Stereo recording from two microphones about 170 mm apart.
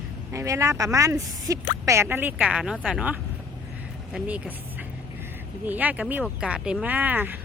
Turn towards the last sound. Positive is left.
turn(degrees=-10)  # may be behind; listen again after turning